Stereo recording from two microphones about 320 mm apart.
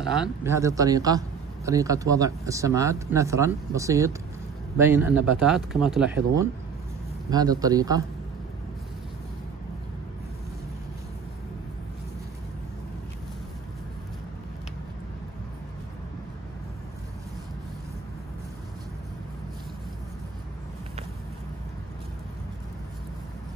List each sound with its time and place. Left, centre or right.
0.0 s speech: centre